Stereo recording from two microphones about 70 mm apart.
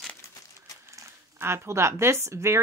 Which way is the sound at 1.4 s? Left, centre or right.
Right.